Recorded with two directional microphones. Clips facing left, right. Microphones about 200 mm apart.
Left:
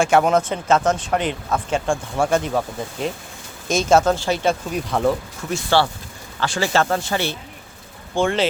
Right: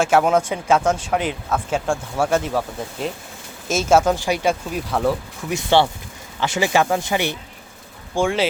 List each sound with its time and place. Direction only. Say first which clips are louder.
0.0 s speech: even; 5° right (ahead or behind)
4.7 s speech: left 1 dB; 5° right (ahead or behind)
5.5 s speech: right 2 dB; 20° right (ahead or behind)